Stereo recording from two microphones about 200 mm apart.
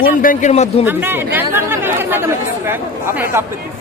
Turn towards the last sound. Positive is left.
turn(degrees=-10)  # may be behind; listen again after turning